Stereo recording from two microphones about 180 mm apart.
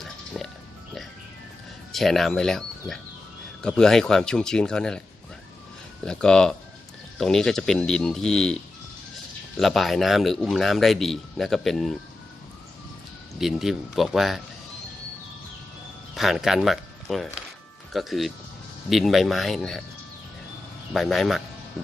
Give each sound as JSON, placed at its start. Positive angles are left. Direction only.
{"t": 0.0, "sound": "music", "side_deg": 0}
{"t": 1.9, "sound": "a man's voice", "side_deg": 0}
{"t": 6.0, "sound": "a man's voice", "side_deg": 5}
{"t": 9.6, "sound": "a man's voice", "side_deg": 0}
{"t": 13.4, "sound": "a man's voice", "side_deg": 0}
{"t": 16.2, "sound": "a man's voice", "side_deg": 0}
{"t": 20.9, "sound": "a man's voice", "side_deg": 0}